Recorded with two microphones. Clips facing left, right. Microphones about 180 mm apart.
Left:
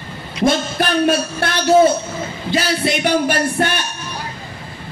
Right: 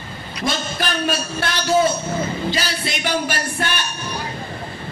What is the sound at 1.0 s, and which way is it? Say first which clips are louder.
A man's voice: left 6 dB; 55° left (ahead or behind).